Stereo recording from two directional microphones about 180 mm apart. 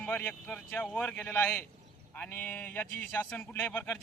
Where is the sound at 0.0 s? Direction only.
10° left (ahead or behind).